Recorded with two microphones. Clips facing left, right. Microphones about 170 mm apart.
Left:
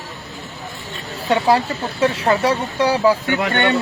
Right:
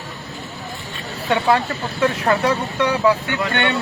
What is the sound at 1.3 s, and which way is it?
Speech, 30° left (ahead or behind).